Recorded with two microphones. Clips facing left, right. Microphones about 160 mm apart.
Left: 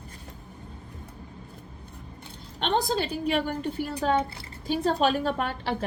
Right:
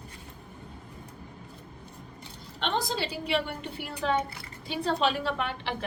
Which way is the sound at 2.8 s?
45° left (ahead or behind).